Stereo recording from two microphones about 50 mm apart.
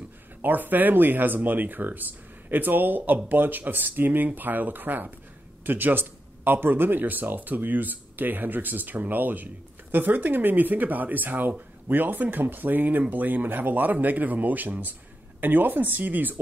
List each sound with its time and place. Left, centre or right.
0.4 s speech: right